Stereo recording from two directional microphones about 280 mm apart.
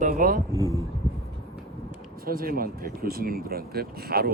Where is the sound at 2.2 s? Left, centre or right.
Right.